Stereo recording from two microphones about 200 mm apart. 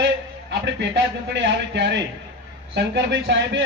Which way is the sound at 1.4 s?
60° right (ahead or behind).